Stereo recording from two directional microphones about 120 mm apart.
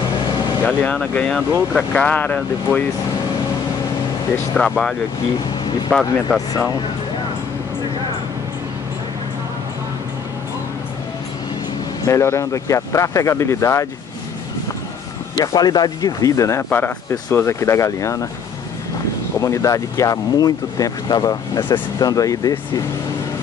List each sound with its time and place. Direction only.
0.7 s speech: 10° left (ahead or behind)
4.6 s speech: 5° left (ahead or behind)
12.1 s speech: 25° left (ahead or behind)
15.3 s speech: 30° left (ahead or behind)
19.4 s speech: 25° left (ahead or behind)